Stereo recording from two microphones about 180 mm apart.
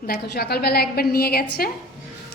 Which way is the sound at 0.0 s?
60° left (ahead or behind).